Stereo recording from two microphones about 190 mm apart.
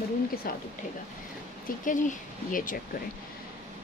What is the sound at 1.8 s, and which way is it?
Speech, 45° left (ahead or behind).